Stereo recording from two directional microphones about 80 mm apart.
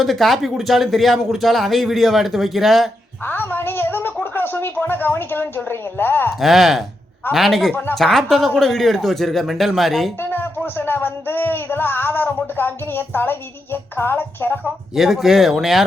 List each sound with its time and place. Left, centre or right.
0.0 s speech: centre
3.2 s a woman's voice: left
6.4 s speech: centre
7.7 s speech: centre
7.9 s speech: centre
10.2 s speech: left
14.9 s speech: centre